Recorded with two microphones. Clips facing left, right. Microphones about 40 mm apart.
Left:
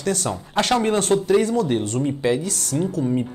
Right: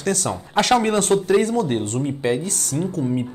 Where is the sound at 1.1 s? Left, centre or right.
Centre.